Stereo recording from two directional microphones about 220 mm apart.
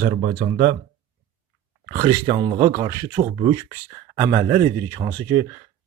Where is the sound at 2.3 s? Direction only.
20° right (ahead or behind).